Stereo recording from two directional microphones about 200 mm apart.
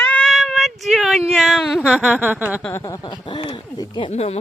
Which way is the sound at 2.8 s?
20° left (ahead or behind).